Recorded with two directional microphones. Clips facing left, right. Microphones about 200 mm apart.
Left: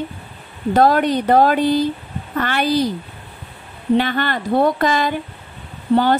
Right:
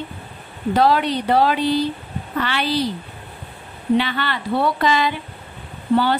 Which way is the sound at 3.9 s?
45° left (ahead or behind).